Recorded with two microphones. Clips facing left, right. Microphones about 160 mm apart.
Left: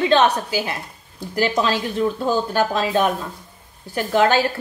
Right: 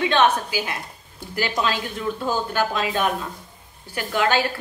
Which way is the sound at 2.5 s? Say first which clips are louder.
Left 3 dB; 35° left (ahead or behind).